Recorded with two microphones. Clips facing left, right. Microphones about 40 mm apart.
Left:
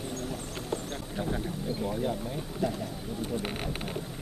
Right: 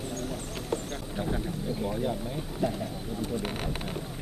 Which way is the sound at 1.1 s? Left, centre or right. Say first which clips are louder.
Right 1 dB; centre.